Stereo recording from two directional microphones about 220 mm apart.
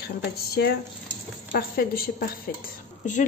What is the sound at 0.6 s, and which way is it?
A woman's voice, 50° left (ahead or behind).